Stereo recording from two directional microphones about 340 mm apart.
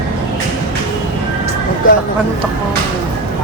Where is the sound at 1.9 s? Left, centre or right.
Left.